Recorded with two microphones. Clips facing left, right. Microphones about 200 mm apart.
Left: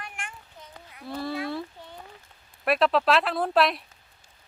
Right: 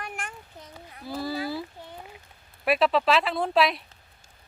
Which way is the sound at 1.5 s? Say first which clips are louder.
Even; 5° right (ahead or behind).